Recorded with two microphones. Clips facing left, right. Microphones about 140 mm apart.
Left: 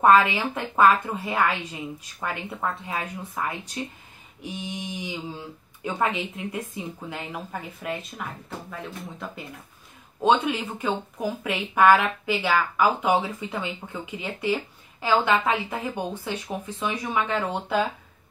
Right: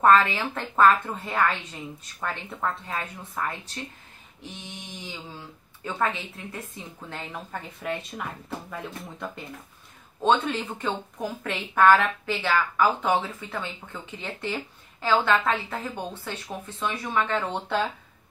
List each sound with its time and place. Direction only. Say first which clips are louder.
0.0 s speech: left 1 dB; 10° left (ahead or behind)